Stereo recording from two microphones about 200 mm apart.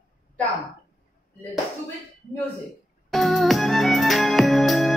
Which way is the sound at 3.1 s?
Centre (ahead or behind).